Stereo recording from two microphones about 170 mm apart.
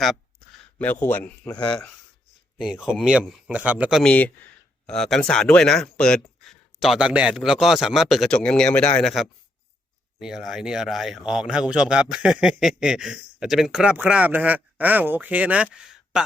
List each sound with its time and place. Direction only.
0.8 s a man's voice: 10° left (ahead or behind)
2.6 s speech: 5° right (ahead or behind)